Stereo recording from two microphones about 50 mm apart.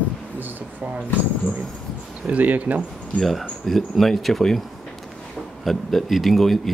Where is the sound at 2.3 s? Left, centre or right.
Right.